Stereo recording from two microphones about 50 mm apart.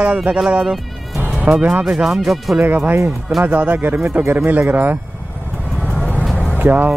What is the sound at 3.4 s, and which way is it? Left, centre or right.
Speech, right.